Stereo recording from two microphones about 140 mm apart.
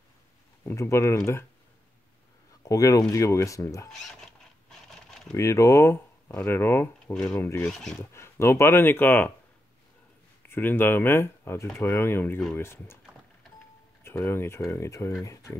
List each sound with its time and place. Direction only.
0.7 s speech: 20° left (ahead or behind)
2.6 s speech: 25° left (ahead or behind)
3.9 s a sound: 5° left (ahead or behind)
5.3 s speech: 20° left (ahead or behind)
7.6 s speech: 5° left (ahead or behind)
8.0 s speech: 20° left (ahead or behind)
10.5 s speech: 15° left (ahead or behind)
14.0 s speech: 15° left (ahead or behind)